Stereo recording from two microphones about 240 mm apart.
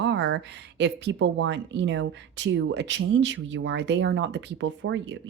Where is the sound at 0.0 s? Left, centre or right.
Right.